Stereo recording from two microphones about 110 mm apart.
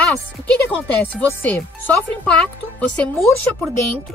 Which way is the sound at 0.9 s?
15° left (ahead or behind).